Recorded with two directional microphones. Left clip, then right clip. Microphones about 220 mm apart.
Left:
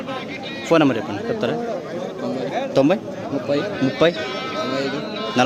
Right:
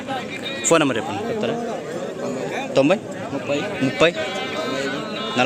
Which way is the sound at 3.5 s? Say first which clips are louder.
Left 1 dB; 40° left (ahead or behind).